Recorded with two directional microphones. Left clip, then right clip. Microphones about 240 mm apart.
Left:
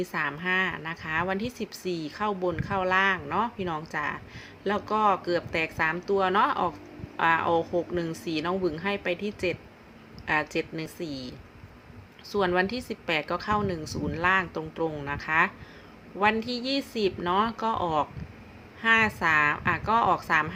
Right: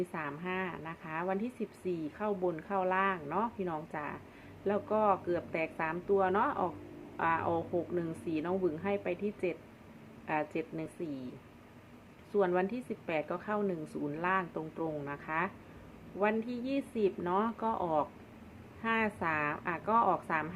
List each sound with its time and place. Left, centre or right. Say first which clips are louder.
0.1 s speech: left 11 dB; centre
12.4 s speech: left 5 dB; centre